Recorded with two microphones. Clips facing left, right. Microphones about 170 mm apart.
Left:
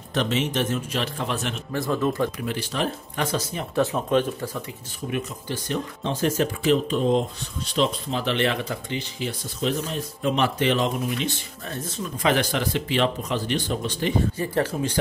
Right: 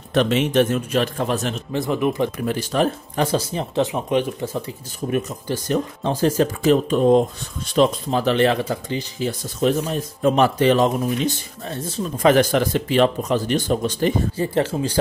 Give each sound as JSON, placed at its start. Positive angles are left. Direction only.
{"t": 0.1, "sound": "speech", "side_deg": -60}
{"t": 1.7, "sound": "speech", "side_deg": -20}
{"t": 2.3, "sound": "speech", "side_deg": -45}
{"t": 3.3, "sound": "speech", "side_deg": -30}
{"t": 3.8, "sound": "speech", "side_deg": -15}
{"t": 4.6, "sound": "speech", "side_deg": -35}
{"t": 12.2, "sound": "speech", "side_deg": -45}
{"t": 14.3, "sound": "speech", "side_deg": -25}